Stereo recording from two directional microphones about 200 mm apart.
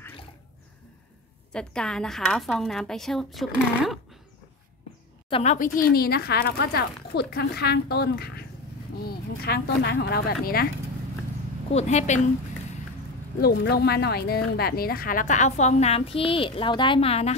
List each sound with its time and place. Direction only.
1.5 s a woman's voice: 5° left (ahead or behind)
5.3 s speech: 35° left (ahead or behind)
5.9 s speech: 50° left (ahead or behind)
11.7 s speech: 35° left (ahead or behind)
13.4 s speech: 50° left (ahead or behind); by 17.3 s 30° left (ahead or behind)